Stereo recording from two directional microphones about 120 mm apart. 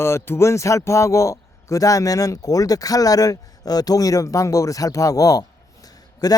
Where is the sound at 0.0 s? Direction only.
20° left (ahead or behind).